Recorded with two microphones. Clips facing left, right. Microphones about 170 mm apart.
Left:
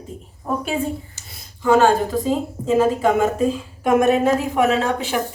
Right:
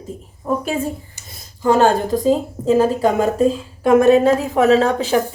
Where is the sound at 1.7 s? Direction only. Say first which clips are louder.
Right 1 dB; 35° right (ahead or behind).